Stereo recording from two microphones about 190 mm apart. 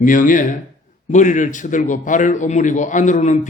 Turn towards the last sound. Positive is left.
turn(degrees=40)  # may be behind; listen again after turning